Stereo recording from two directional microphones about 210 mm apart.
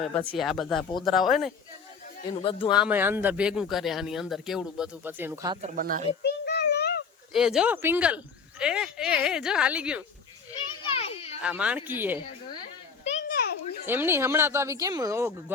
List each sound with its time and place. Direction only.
0.2 s speech: 5° left (ahead or behind)
2.3 s speech: 25° left (ahead or behind)
2.7 s speech: 5° right (ahead or behind)
5.6 s speech: 40° right (ahead or behind)
6.2 s a sound: 50° left (ahead or behind)
7.3 s speech: 5° right (ahead or behind)
10.8 s children playing: 30° left (ahead or behind)
11.4 s speech: 5° right (ahead or behind)
13.1 s a sound: 35° left (ahead or behind)
13.8 s speech: 10° right (ahead or behind)